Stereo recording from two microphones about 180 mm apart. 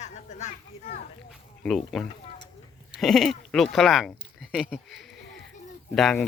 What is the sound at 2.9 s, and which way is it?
Speech, centre (ahead or behind).